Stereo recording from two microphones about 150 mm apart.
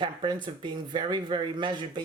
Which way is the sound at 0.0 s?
30° right (ahead or behind).